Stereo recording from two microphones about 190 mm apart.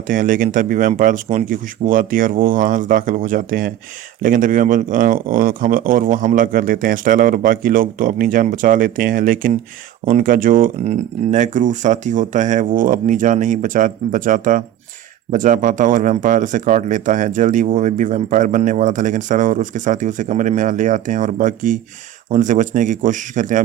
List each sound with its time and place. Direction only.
0.1 s speech: 45° right (ahead or behind)